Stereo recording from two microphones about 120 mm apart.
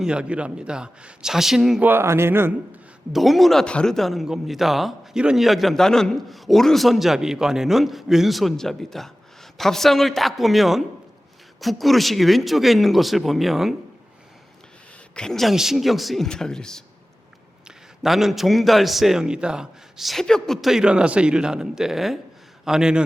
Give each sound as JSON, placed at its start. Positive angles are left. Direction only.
{"t": 0.0, "sound": "a man's voice", "side_deg": -10}
{"t": 1.8, "sound": "speech", "side_deg": -20}
{"t": 3.1, "sound": "speech", "side_deg": 0}
{"t": 15.1, "sound": "speech", "side_deg": 5}